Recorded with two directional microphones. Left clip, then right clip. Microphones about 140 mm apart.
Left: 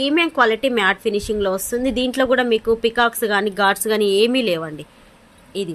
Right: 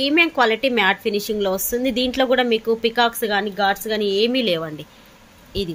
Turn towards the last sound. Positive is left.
turn(degrees=10)  # may be behind; listen again after turning